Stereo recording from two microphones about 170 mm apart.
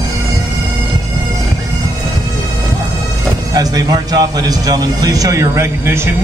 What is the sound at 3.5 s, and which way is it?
A man's voice, 20° right (ahead or behind).